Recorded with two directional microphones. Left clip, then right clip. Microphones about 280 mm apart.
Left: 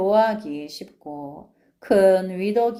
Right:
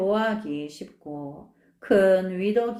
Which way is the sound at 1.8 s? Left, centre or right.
Centre.